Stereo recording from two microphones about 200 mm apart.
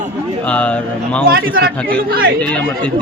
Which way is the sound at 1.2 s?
45° right (ahead or behind).